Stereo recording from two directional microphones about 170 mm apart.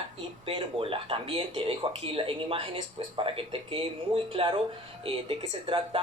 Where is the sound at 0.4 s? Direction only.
30° right (ahead or behind).